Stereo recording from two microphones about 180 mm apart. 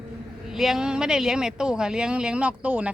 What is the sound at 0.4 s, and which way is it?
Speech, centre (ahead or behind).